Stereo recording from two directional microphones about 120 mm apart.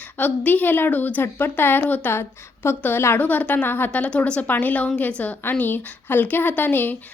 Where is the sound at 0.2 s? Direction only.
15° left (ahead or behind).